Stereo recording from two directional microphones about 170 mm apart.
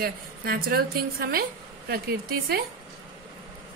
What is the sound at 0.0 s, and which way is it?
A woman's voice, 65° right (ahead or behind).